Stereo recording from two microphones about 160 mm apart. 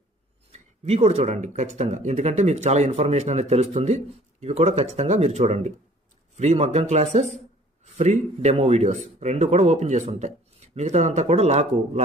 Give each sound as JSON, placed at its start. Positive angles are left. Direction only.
{"t": 0.5, "sound": "speech", "side_deg": -40}